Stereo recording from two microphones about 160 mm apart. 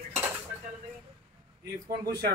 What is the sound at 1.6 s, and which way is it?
Speech, 85° right.